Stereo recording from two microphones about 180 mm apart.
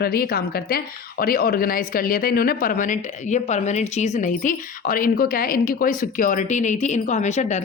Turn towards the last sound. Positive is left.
turn(degrees=40)  # may be behind; listen again after turning